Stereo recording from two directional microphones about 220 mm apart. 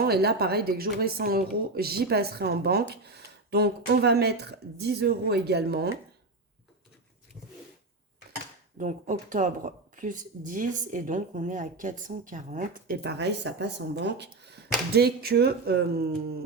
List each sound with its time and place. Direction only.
0.0 s speech: 45° right (ahead or behind)
8.8 s speech: 35° right (ahead or behind)